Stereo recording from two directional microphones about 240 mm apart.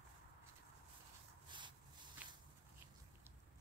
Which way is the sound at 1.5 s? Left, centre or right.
Centre.